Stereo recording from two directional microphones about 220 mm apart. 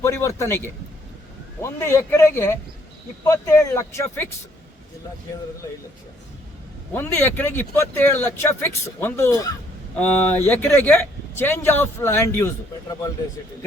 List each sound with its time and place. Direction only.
0.0 s speech: 10° left (ahead or behind)
6.9 s speech: 10° left (ahead or behind)